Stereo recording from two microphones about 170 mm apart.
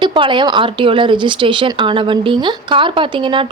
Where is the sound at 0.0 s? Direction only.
30° right (ahead or behind).